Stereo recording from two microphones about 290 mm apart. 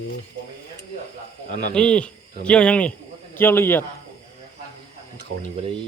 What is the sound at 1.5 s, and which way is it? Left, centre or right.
Speech, left.